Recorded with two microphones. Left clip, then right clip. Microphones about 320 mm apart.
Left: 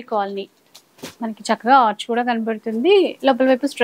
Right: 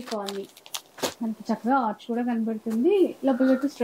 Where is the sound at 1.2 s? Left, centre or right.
Centre.